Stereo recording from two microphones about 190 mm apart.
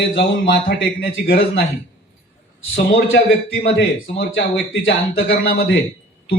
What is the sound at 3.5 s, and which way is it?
A man's voice, 65° left (ahead or behind).